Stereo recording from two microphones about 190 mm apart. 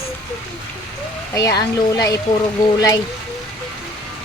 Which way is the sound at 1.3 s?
20° left (ahead or behind).